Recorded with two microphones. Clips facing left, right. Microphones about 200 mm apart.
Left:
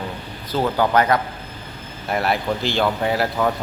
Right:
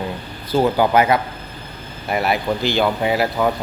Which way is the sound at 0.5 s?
10° right (ahead or behind).